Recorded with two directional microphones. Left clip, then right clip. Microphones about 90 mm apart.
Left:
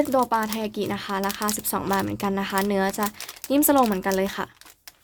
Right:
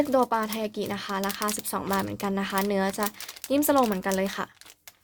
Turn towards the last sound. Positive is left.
turn(degrees=-5)  # may be behind; listen again after turning